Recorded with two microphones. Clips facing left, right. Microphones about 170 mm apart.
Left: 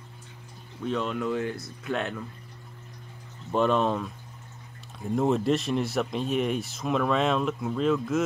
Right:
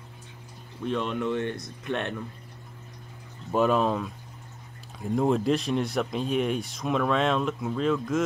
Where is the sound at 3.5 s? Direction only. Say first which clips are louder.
Right 1 dB; 5° right (ahead or behind).